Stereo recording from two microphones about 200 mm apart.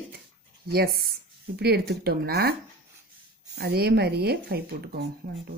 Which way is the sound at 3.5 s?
50° right (ahead or behind).